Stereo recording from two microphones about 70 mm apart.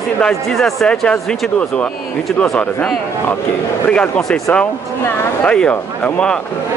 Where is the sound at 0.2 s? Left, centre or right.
Centre.